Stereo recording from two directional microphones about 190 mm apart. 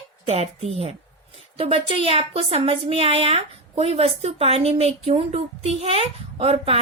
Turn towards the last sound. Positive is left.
turn(degrees=-30)  # may be behind; listen again after turning